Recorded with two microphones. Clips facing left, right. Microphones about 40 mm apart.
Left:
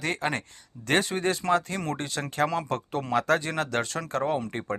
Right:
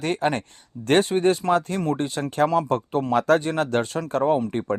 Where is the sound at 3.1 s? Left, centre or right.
Right.